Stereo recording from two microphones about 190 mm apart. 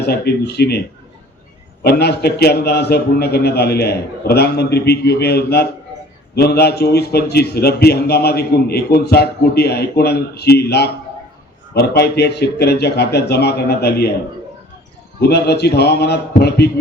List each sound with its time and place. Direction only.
0.0 s a man's voice: 60° left (ahead or behind)
1.8 s a man's voice: 60° left (ahead or behind)
15.3 s a man's voice: 60° left (ahead or behind)